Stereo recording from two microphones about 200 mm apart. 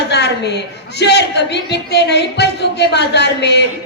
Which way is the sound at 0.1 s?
55° left (ahead or behind).